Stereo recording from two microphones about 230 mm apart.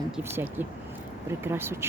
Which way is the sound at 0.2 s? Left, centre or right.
Centre.